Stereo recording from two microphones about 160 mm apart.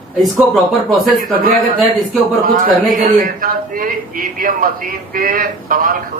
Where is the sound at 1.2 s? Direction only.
65° right (ahead or behind).